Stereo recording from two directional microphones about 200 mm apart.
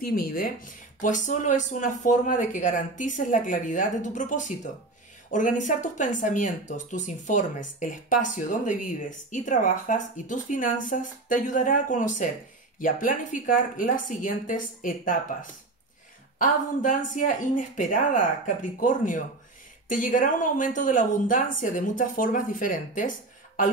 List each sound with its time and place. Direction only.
0.0 s speech: 45° left (ahead or behind)
16.3 s speech: 40° left (ahead or behind)